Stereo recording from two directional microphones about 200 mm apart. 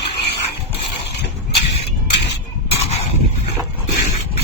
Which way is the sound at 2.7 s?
30° left (ahead or behind).